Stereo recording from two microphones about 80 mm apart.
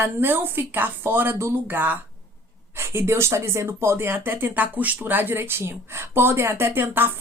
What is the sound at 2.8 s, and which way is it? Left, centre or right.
Speech, right.